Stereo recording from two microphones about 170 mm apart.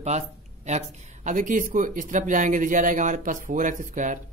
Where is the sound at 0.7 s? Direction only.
45° right (ahead or behind).